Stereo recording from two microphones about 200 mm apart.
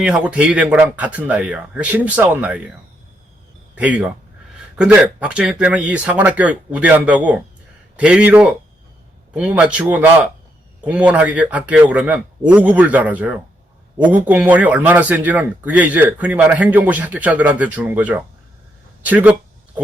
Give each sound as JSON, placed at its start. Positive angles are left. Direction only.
{"t": 0.0, "sound": "speech", "side_deg": -5}
{"t": 3.8, "sound": "speech", "side_deg": -5}
{"t": 19.0, "sound": "a sound", "side_deg": -10}